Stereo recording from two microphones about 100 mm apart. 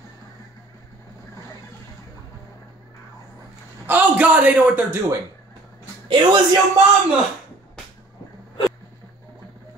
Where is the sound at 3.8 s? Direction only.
15° right (ahead or behind).